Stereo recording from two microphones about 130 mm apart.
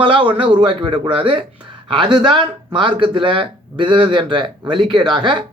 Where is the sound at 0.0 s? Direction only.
40° right (ahead or behind).